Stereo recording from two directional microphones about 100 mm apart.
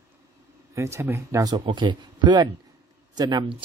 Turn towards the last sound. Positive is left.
turn(degrees=-50)  # may be behind; listen again after turning